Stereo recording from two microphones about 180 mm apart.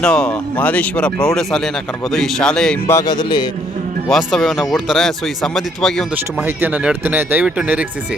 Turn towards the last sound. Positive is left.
turn(degrees=-10)  # may be behind; listen again after turning